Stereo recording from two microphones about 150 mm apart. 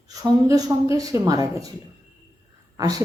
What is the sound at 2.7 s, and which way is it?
Speech, 25° right (ahead or behind).